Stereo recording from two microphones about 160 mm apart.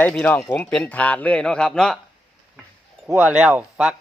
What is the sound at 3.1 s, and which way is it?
Speech, 10° right (ahead or behind).